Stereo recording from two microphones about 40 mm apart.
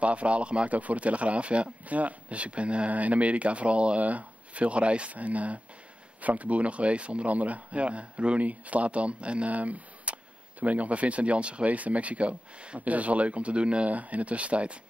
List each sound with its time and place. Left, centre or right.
0.0 s speech: right